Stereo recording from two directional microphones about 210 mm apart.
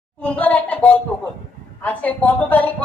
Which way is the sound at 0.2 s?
5° left (ahead or behind).